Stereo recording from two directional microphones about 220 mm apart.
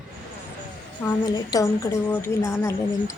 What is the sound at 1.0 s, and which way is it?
A woman's voice, 15° left (ahead or behind).